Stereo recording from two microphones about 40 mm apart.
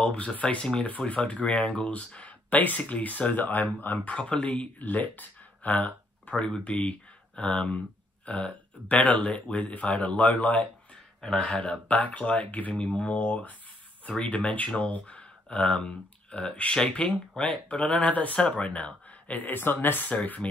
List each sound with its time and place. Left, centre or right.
0.0 s speech: left
4.2 s speech: left
12.8 s speech: left
13.1 s speech: left
15.7 s speech: centre
16.3 s speech: left
20.1 s speech: left